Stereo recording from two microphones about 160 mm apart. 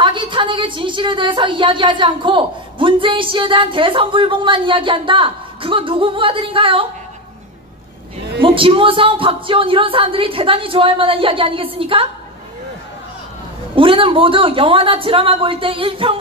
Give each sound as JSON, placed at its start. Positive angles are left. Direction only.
{"t": 0.0, "sound": "a woman's voice", "side_deg": -30}
{"t": 8.4, "sound": "a woman's voice", "side_deg": -35}
{"t": 13.7, "sound": "a woman's voice", "side_deg": -35}